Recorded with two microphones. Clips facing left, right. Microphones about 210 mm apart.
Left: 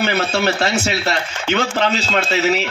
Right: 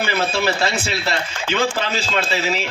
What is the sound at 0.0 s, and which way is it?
A man's voice, 60° left (ahead or behind).